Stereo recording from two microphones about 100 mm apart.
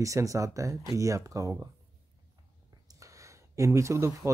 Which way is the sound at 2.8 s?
35° right (ahead or behind).